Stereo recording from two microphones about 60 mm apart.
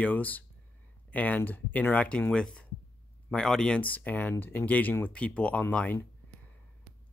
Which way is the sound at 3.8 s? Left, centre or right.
Left.